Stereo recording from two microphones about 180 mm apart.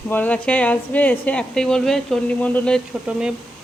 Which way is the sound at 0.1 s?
10° left (ahead or behind).